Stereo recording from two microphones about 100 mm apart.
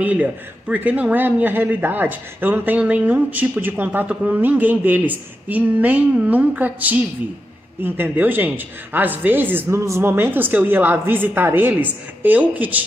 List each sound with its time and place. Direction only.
0.0 s a woman's voice: 15° right (ahead or behind)